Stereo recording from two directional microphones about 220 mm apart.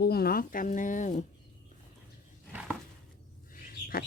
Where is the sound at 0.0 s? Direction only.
45° left (ahead or behind).